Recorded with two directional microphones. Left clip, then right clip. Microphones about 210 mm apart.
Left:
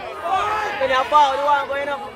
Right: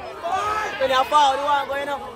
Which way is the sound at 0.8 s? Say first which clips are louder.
Left 1 dB; 55° right (ahead or behind).